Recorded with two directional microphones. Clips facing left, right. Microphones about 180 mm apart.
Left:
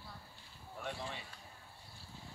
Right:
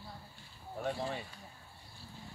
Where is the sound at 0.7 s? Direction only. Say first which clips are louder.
Right 7 dB; 40° right (ahead or behind).